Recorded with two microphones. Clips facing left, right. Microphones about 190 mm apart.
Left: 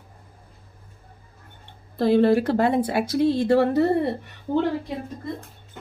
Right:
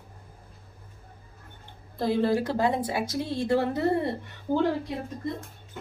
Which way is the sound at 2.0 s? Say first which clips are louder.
Left 7 dB; 65° left (ahead or behind).